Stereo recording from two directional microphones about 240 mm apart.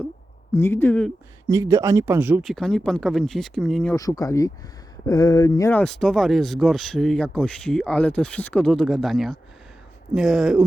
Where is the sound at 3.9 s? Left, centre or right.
Centre.